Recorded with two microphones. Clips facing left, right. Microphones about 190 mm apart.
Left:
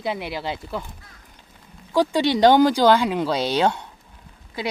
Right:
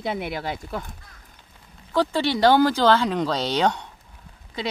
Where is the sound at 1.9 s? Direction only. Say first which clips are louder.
Left 3 dB; 15° left (ahead or behind).